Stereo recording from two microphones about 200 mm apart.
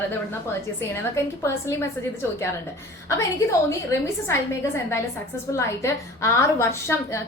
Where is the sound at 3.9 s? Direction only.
15° left (ahead or behind).